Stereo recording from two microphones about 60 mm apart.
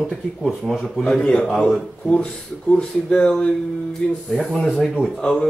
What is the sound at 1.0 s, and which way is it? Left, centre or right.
Mantra, centre.